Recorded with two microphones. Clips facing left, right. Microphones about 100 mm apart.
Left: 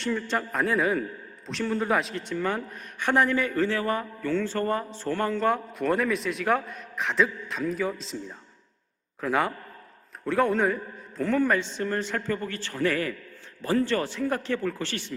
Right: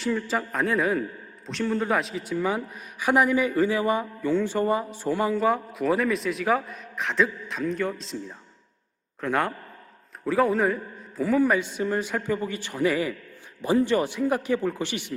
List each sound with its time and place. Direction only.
0.0 s a woman's voice: 5° right (ahead or behind)